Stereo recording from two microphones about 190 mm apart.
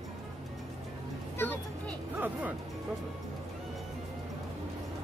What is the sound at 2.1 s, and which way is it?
Speech, 10° right (ahead or behind).